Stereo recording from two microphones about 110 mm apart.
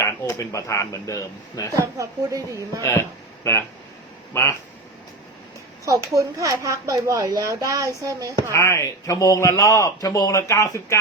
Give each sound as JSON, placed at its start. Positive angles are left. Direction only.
{"t": 0.0, "sound": "speech", "side_deg": 25}
{"t": 1.7, "sound": "speech", "side_deg": -30}
{"t": 2.8, "sound": "speech", "side_deg": 25}
{"t": 6.1, "sound": "speech", "side_deg": -30}
{"t": 8.5, "sound": "speech", "side_deg": 25}